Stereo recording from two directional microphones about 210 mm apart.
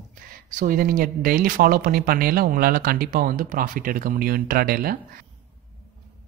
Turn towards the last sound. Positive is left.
turn(degrees=-45)  # may be behind; listen again after turning